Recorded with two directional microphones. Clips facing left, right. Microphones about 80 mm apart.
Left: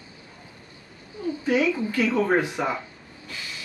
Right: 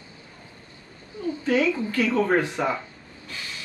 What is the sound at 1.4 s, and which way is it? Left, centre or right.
Speech, centre.